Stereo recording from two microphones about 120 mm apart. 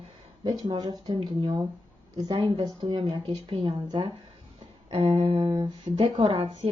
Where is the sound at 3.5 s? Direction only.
50° right (ahead or behind).